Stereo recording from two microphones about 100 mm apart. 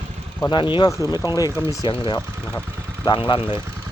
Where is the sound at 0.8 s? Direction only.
35° left (ahead or behind).